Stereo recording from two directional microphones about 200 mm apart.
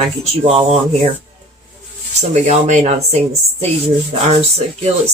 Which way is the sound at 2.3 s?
35° right (ahead or behind).